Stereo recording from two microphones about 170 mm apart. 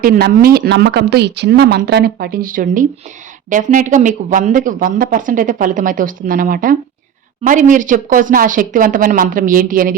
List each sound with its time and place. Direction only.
0.0 s speech: 60° right (ahead or behind)